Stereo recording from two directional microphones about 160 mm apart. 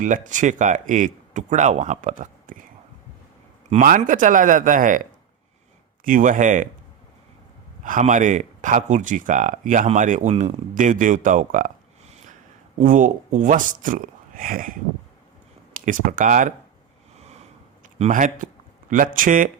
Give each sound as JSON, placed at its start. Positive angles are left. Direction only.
{"t": 0.0, "sound": "speech", "side_deg": -50}
{"t": 3.7, "sound": "speech", "side_deg": -50}
{"t": 6.1, "sound": "speech", "side_deg": -55}
{"t": 7.9, "sound": "speech", "side_deg": -55}
{"t": 12.8, "sound": "speech", "side_deg": -55}
{"t": 17.9, "sound": "speech", "side_deg": -45}